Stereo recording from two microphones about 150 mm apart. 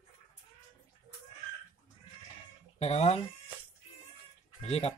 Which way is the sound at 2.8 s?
45° left (ahead or behind).